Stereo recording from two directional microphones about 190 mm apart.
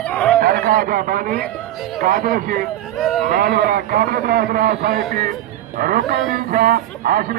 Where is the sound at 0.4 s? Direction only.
50° right (ahead or behind).